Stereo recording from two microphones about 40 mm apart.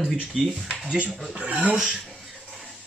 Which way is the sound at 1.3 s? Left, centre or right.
Right.